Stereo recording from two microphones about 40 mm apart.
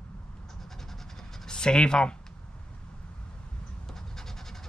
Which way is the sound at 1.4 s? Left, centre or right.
Centre.